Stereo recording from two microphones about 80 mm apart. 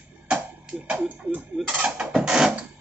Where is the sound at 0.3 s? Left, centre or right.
Centre.